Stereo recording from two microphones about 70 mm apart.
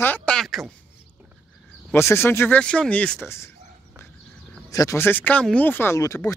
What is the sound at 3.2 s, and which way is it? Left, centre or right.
Speech, left.